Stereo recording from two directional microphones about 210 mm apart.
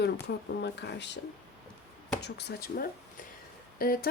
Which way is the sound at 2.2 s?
50° left (ahead or behind).